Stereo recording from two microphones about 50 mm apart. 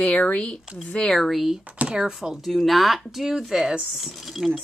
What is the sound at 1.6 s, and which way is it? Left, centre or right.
Speech, right.